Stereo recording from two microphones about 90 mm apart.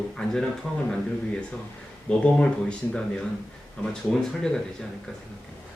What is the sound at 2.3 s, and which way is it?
Speech, 10° left (ahead or behind).